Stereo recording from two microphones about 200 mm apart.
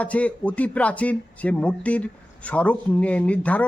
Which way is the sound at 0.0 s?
5° left (ahead or behind).